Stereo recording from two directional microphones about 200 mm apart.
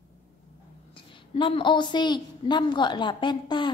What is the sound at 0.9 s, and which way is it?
A woman's voice, 25° left (ahead or behind).